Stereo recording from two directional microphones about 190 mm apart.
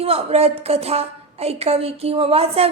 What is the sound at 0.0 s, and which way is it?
A woman's voice, 30° right (ahead or behind).